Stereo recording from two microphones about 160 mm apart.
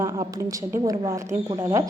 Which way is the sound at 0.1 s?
20° right (ahead or behind).